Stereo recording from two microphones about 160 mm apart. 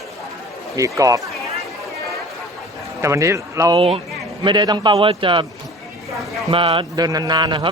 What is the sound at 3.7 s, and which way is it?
A man's voice, 35° right (ahead or behind).